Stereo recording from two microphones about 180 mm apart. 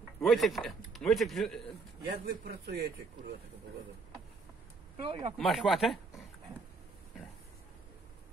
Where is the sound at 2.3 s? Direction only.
60° right (ahead or behind).